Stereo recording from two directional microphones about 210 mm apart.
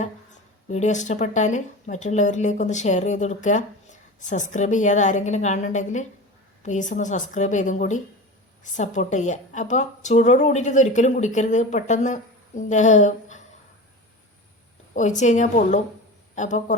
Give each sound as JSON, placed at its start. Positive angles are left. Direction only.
{"t": 0.7, "sound": "a woman's voice", "side_deg": 35}
{"t": 14.9, "sound": "a woman's voice", "side_deg": 35}